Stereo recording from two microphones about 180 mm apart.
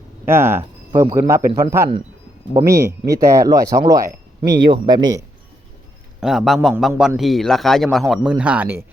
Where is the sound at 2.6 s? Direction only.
20° right (ahead or behind).